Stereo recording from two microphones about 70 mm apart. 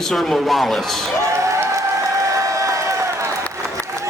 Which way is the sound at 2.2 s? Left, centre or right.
Right.